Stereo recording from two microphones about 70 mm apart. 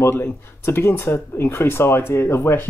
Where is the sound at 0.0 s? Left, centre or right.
Left.